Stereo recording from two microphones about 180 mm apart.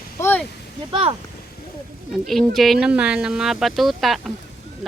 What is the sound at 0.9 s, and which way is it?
Speech, 30° right (ahead or behind).